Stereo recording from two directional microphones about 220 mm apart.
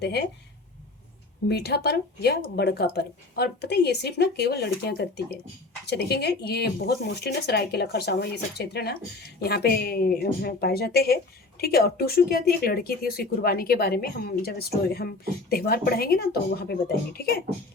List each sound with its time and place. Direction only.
0.0 s speech: 50° left (ahead or behind)
1.5 s speech: 50° left (ahead or behind)